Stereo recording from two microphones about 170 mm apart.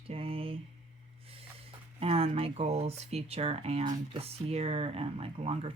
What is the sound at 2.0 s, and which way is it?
Speech, 35° right (ahead or behind).